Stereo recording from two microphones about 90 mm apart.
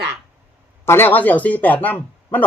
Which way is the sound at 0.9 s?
25° left (ahead or behind).